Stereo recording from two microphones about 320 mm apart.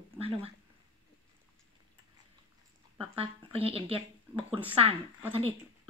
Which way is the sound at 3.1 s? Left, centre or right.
Centre.